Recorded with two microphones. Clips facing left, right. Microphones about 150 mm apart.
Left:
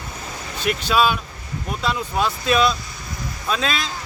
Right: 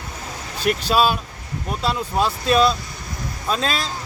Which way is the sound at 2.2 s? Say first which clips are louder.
Right 2 dB; 35° right (ahead or behind).